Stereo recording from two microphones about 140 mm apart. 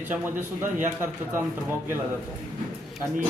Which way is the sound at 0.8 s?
15° right (ahead or behind).